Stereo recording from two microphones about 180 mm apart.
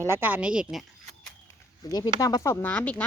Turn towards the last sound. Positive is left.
turn(degrees=10)  # may be behind; listen again after turning